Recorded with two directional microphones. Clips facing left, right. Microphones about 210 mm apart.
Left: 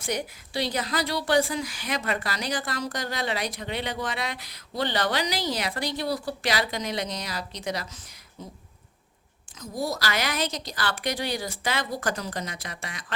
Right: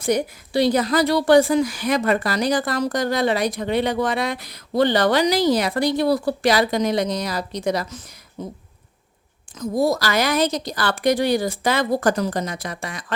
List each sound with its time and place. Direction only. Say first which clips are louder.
0.0 s a woman's voice: right 9 dB; 45° right (ahead or behind)
9.6 s a woman's voice: right 10 dB; 50° right (ahead or behind)